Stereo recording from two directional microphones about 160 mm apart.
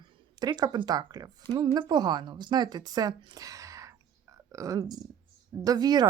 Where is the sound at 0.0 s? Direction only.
25° right (ahead or behind).